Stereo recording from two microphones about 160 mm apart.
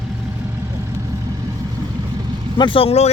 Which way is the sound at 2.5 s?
30° left (ahead or behind).